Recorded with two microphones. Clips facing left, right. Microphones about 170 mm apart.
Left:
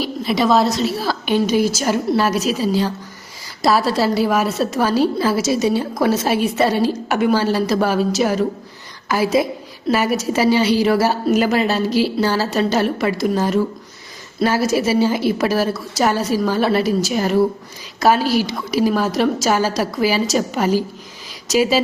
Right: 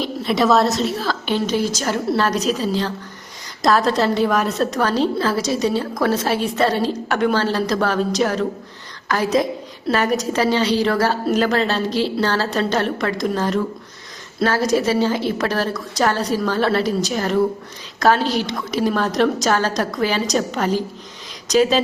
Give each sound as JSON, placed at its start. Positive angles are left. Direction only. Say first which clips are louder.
{"t": 0.0, "sound": "a woman's voice", "louder": "even", "side_deg": 5}